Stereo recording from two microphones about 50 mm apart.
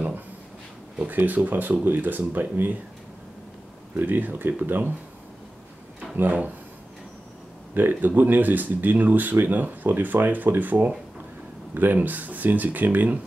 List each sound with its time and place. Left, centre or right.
1.0 s speech: right
3.9 s speech: right
6.1 s speech: right
7.7 s speech: right